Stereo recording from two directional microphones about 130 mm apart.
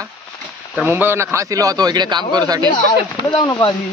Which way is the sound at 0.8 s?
15° right (ahead or behind).